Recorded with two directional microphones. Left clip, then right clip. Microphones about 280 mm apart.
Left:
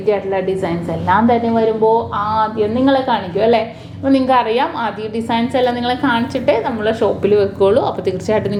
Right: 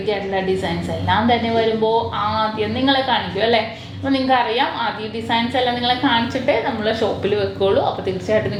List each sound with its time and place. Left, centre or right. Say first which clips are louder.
0.6 s a woman's voice: left 4 dB; left
7.3 s speech: left 5 dB; left